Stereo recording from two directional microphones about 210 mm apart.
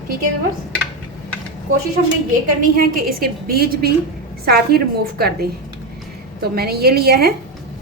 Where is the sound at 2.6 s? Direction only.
45° right (ahead or behind).